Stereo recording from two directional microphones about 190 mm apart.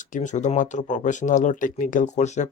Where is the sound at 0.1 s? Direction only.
40° left (ahead or behind).